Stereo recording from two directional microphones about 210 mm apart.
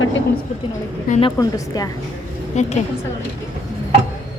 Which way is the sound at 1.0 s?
35° left (ahead or behind).